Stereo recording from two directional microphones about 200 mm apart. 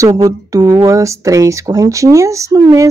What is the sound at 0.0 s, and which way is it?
Speech, 15° right (ahead or behind).